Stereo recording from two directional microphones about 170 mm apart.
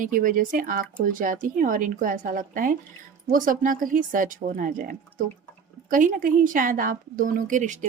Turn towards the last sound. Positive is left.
turn(degrees=-45)  # may be behind; listen again after turning